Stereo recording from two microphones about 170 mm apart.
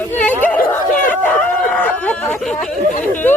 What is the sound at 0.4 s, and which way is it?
Chatter, 10° left (ahead or behind).